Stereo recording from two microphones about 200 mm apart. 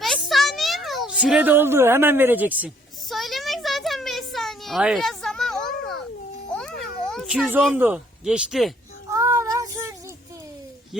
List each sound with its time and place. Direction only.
0.0 s a sound: centre (ahead or behind)
0.9 s cat: centre (ahead or behind)
7.8 s speech: 10° right (ahead or behind)
9.1 s child singing: 15° right (ahead or behind)